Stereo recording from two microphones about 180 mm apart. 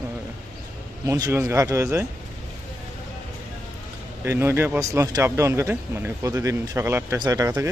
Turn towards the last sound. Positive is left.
turn(degrees=-20)  # may be behind; listen again after turning